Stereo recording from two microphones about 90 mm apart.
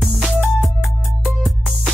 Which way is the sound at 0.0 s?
5° right (ahead or behind).